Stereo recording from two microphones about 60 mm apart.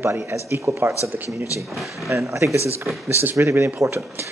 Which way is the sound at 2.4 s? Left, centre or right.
Right.